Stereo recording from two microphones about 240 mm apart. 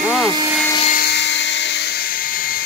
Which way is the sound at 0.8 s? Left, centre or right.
Left.